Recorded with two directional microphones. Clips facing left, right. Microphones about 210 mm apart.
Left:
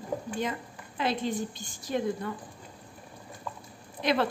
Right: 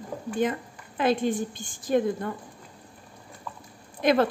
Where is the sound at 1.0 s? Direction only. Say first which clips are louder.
Right 5 dB; 50° right (ahead or behind).